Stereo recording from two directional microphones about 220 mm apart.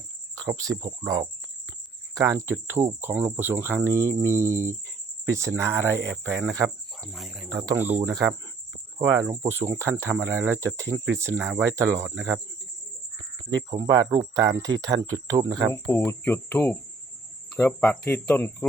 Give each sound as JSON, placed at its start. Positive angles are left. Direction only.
{"t": 0.3, "sound": "speech", "side_deg": -15}
{"t": 3.9, "sound": "speech", "side_deg": 10}
{"t": 4.4, "sound": "speech", "side_deg": -10}
{"t": 7.0, "sound": "speech", "side_deg": 0}
{"t": 7.5, "sound": "speech", "side_deg": -15}
{"t": 13.7, "sound": "speech", "side_deg": -15}
{"t": 15.7, "sound": "speech", "side_deg": 10}